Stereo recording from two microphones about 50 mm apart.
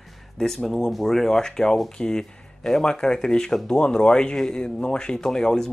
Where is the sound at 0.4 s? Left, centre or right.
Centre.